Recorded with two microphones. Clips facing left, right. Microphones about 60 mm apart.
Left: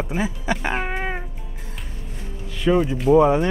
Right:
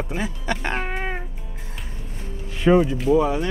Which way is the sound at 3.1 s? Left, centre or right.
Left.